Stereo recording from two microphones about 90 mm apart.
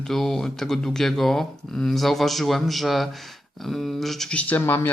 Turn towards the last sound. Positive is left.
turn(degrees=25)  # may be behind; listen again after turning